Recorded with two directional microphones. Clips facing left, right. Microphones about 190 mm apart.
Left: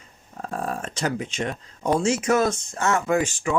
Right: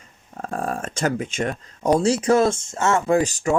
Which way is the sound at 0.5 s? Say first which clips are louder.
Right 2 dB; 50° right (ahead or behind).